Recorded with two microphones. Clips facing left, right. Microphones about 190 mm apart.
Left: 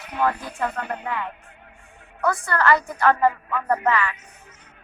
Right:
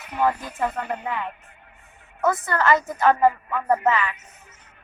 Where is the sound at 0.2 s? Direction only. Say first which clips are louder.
Right 1 dB; 20° right (ahead or behind).